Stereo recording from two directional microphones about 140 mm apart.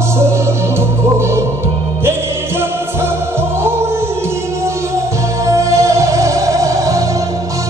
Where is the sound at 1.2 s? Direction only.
20° right (ahead or behind).